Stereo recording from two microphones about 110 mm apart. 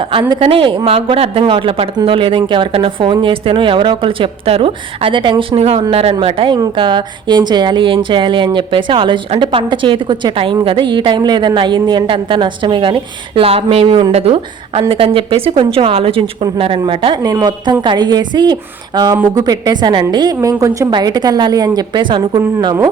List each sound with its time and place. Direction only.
0.0 s a woman's voice: 50° right (ahead or behind)
6.7 s a woman's voice: 45° right (ahead or behind)
17.2 s a woman's voice: 40° right (ahead or behind)